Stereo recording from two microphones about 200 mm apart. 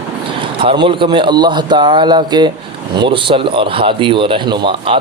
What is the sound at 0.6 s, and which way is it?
Speech, 25° right (ahead or behind).